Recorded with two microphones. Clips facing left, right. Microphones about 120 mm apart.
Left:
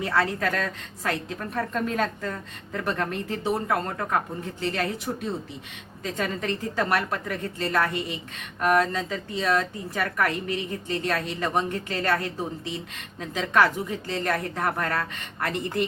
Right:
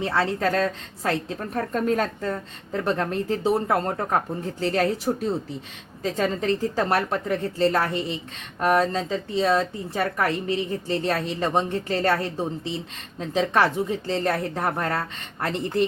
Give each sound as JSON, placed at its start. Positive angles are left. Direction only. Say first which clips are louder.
{"t": 0.0, "sound": "a woman's voice", "louder": "right 2 dB", "side_deg": -30}